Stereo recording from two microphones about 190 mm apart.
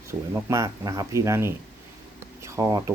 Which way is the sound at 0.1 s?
15° right (ahead or behind).